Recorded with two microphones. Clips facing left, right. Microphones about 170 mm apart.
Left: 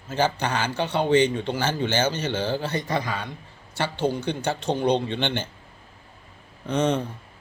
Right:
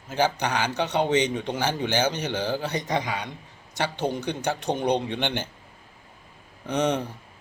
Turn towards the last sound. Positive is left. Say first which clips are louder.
# left 1 dB
turn(degrees=-15)  # may be behind; listen again after turning